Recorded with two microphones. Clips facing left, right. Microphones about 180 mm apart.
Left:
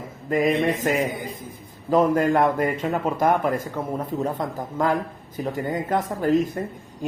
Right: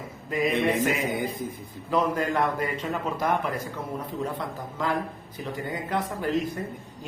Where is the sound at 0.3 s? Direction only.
45° left (ahead or behind).